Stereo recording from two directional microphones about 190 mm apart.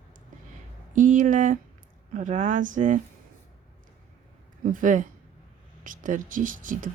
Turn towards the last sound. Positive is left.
turn(degrees=-45)  # may be behind; listen again after turning